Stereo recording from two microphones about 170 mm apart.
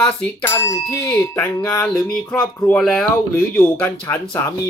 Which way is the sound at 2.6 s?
5° left (ahead or behind).